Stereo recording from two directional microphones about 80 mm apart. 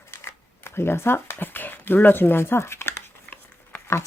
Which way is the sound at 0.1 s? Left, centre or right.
Left.